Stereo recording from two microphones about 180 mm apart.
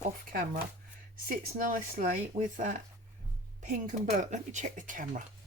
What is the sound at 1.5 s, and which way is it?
Speech, 50° right (ahead or behind).